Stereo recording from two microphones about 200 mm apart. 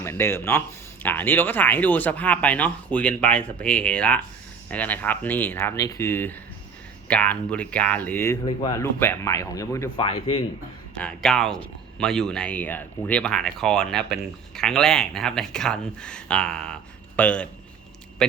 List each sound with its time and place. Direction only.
0.0 s speech: 15° left (ahead or behind)
10.0 s a man's voice: 25° left (ahead or behind)
10.9 s a man's voice: 5° left (ahead or behind)